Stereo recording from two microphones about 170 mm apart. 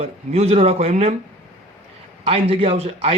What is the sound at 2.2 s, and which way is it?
Speech, 35° right (ahead or behind).